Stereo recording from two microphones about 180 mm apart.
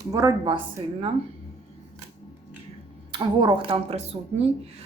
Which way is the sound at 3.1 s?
25° right (ahead or behind).